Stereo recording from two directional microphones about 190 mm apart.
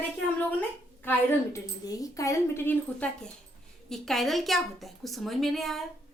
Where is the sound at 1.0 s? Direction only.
15° left (ahead or behind).